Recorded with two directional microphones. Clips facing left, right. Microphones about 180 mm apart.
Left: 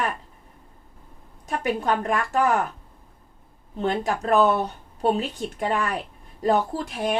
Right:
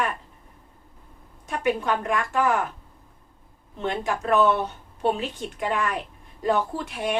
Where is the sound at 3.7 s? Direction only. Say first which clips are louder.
Left 3 dB; 40° left (ahead or behind).